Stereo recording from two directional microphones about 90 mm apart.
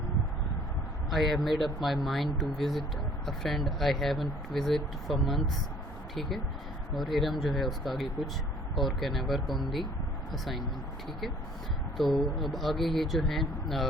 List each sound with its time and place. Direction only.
1.1 s speech: centre (ahead or behind)
6.9 s speech: centre (ahead or behind)
11.9 s speech: centre (ahead or behind)